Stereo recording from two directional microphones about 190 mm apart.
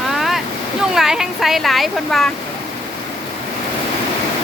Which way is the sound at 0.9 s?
Centre (ahead or behind).